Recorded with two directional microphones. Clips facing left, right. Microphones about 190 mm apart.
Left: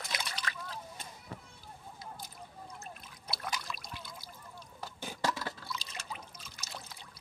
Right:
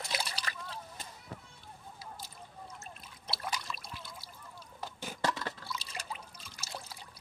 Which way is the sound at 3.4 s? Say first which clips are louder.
Right 1 dB; 5° right (ahead or behind).